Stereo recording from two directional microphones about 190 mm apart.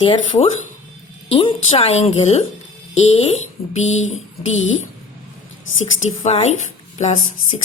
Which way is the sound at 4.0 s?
90° left.